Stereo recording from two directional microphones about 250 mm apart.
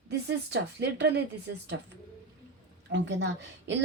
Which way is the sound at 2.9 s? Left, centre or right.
Right.